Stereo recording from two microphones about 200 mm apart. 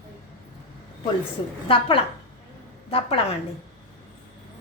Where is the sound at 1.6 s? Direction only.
25° left (ahead or behind).